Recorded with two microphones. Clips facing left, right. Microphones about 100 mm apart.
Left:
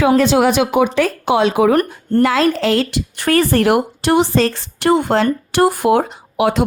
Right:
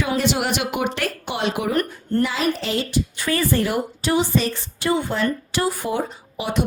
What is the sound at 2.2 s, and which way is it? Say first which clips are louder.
Speech: left 8 dB; 90° left.